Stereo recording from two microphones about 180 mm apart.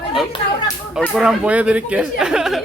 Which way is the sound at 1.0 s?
Centre (ahead or behind).